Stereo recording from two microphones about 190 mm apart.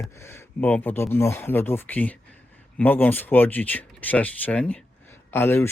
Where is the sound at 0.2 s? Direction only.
15° left (ahead or behind).